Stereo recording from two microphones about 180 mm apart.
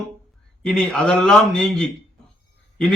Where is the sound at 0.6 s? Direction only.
Centre (ahead or behind).